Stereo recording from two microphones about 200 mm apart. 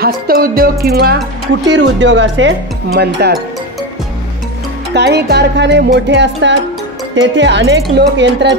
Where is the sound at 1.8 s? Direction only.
65° right (ahead or behind).